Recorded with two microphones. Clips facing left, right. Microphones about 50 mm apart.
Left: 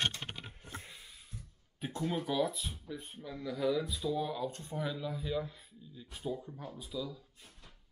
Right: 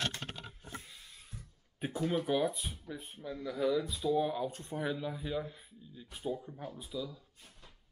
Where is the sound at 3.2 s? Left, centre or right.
Centre.